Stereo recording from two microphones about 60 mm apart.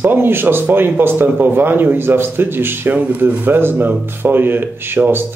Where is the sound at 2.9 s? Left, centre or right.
Right.